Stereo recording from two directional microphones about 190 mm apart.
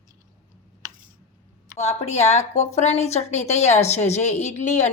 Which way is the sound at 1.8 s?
35° left (ahead or behind).